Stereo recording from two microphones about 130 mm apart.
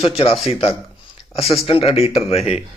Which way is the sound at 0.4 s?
45° left (ahead or behind).